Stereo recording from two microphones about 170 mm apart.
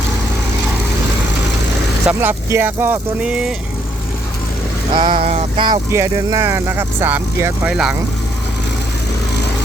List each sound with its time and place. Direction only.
2.0 s speech: 10° right (ahead or behind)
4.9 s a sound: 30° right (ahead or behind)
5.9 s speech: 15° right (ahead or behind)